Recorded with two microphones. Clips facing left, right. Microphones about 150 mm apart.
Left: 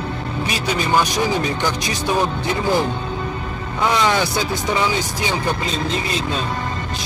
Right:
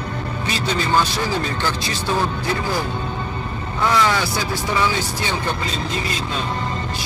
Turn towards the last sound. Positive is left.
turn(degrees=15)  # may be behind; listen again after turning